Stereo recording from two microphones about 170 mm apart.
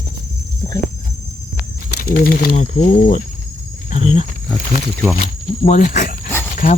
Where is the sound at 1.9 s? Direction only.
65° left (ahead or behind).